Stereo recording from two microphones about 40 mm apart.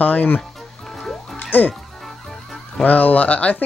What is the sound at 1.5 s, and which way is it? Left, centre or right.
Speech, left.